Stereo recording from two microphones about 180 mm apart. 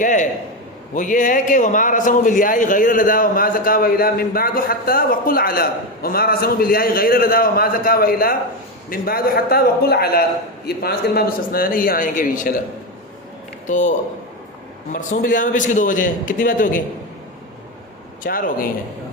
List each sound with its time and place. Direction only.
0.0 s a man's voice: 45° left (ahead or behind)
13.7 s a man's voice: 45° left (ahead or behind)
14.9 s a man's voice: 50° left (ahead or behind)
18.2 s a man's voice: 50° left (ahead or behind)